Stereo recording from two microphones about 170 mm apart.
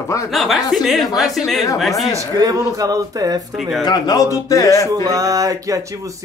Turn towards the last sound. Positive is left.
turn(degrees=-20)  # may be behind; listen again after turning